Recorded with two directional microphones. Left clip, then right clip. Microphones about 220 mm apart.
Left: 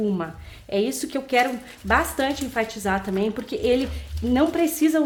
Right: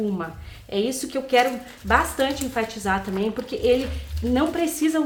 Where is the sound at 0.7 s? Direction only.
30° left (ahead or behind).